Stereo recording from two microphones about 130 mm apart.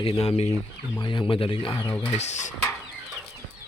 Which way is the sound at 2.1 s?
60° left (ahead or behind).